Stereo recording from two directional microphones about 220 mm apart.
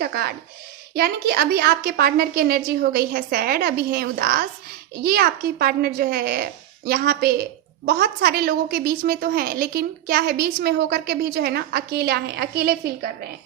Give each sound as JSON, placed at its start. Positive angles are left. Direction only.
{"t": 0.0, "sound": "a woman's voice", "side_deg": -45}